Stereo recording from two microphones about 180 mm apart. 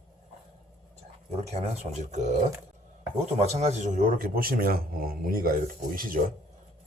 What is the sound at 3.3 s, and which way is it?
A man's voice, 35° right (ahead or behind).